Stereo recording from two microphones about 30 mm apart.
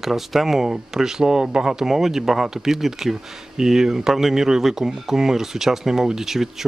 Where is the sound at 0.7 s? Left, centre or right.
Centre.